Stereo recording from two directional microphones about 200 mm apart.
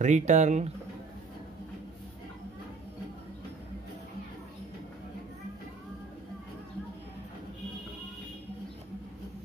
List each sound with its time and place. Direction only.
0.0 s speech: 35° right (ahead or behind)